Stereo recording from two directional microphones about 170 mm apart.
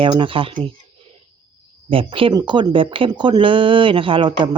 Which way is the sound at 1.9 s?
30° right (ahead or behind).